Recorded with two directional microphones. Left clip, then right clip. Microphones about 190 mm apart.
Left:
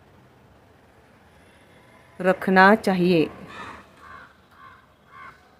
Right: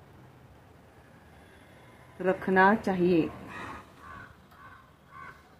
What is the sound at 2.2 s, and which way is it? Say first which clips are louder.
Speech: left 7 dB; 40° left (ahead or behind).